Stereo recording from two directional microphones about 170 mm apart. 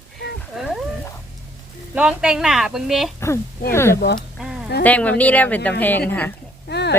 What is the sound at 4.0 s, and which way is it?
Speech, 70° left (ahead or behind).